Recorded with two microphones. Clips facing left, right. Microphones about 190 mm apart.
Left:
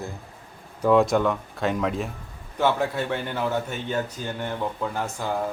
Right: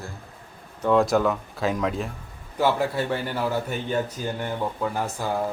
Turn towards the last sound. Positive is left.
turn(degrees=-10)  # may be behind; listen again after turning